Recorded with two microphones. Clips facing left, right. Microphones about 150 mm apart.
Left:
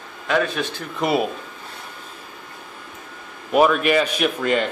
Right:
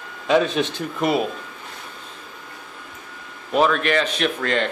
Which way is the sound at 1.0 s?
5° left (ahead or behind).